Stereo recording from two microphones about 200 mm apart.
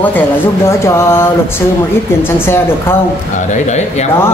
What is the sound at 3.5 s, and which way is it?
Speech, 35° left (ahead or behind).